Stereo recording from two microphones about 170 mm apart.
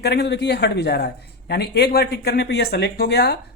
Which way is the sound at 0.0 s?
75° left (ahead or behind).